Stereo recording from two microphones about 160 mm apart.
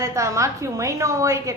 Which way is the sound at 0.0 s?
20° right (ahead or behind).